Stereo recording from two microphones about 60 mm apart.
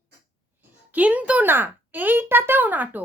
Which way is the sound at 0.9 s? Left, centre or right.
Right.